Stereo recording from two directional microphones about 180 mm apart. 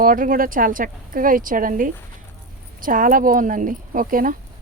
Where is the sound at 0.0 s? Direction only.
50° right (ahead or behind).